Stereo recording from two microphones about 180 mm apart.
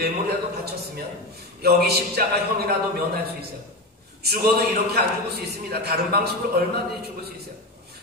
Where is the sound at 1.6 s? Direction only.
60° right (ahead or behind).